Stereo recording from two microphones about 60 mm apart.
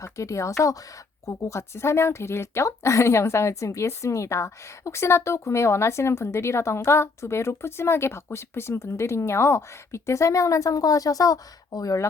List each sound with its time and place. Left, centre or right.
0.0 s a woman's voice: left